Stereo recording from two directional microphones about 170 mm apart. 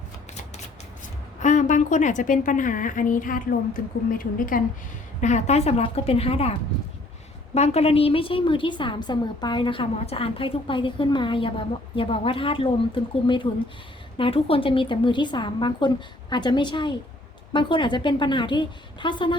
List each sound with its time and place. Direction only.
1.4 s a woman's voice: 45° left (ahead or behind)
5.2 s a woman's voice: 40° left (ahead or behind)
7.5 s a woman's voice: 40° left (ahead or behind)